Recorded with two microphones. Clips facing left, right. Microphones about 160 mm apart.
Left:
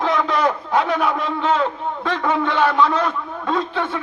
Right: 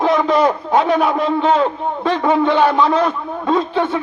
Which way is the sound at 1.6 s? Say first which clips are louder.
Right 5 dB; 20° right (ahead or behind).